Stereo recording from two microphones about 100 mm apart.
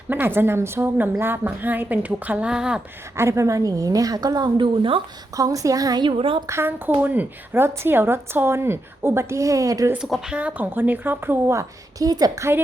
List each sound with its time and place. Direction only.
0.1 s speech: 20° right (ahead or behind)
3.2 s a woman's voice: 30° right (ahead or behind); by 5.0 s 55° right (ahead or behind)
5.4 s a woman's voice: 35° right (ahead or behind)
6.1 s a woman's voice: 60° right (ahead or behind)
6.5 s speech: 20° right (ahead or behind)
10.1 s speech: 10° right (ahead or behind); by 12.5 s 40° right (ahead or behind)